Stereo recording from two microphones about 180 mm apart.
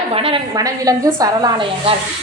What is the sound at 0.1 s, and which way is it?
A woman's voice, 30° right (ahead or behind).